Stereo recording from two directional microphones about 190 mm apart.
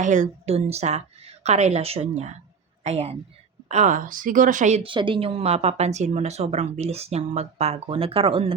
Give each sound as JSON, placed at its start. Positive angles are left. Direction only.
{"t": 0.0, "sound": "a woman's voice", "side_deg": -40}